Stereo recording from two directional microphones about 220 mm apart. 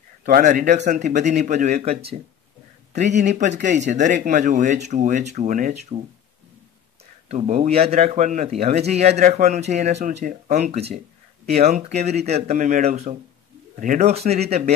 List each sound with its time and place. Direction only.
0.2 s a man's voice: 35° right (ahead or behind)
7.2 s a man's voice: 30° right (ahead or behind)